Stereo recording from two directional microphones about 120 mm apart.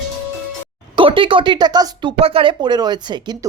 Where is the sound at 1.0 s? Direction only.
45° right (ahead or behind).